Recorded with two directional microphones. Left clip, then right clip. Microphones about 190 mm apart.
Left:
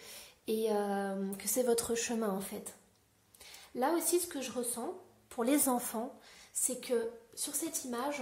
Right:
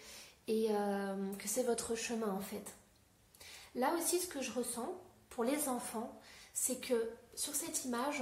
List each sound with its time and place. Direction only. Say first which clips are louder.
0.0 s speech: left 3 dB; 40° left (ahead or behind)
3.7 s a woman's voice: left 3 dB; 40° left (ahead or behind)